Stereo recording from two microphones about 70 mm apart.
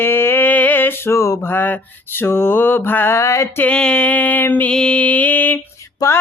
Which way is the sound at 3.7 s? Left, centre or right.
Centre.